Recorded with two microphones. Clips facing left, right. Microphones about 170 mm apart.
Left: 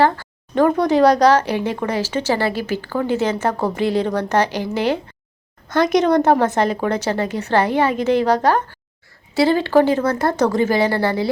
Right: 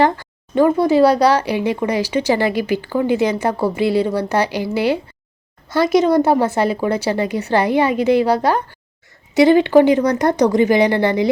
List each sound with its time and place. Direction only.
0.6 s speech: 5° right (ahead or behind)